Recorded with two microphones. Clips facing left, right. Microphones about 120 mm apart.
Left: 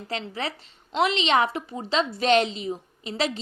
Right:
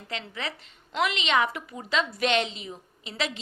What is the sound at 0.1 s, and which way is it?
A woman's voice, 35° left (ahead or behind).